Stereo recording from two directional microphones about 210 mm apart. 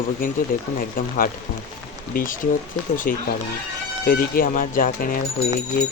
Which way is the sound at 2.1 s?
40° left (ahead or behind).